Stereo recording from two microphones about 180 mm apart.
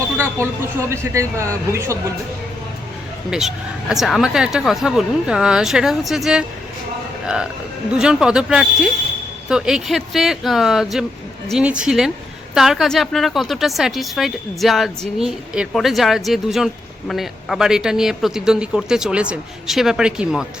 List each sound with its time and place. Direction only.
0.3 s speech: 15° right (ahead or behind)
3.2 s a woman's voice: 5° right (ahead or behind)
7.9 s a woman's voice: 5° right (ahead or behind)